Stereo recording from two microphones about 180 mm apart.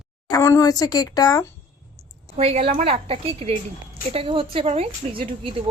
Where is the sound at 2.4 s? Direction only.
35° right (ahead or behind).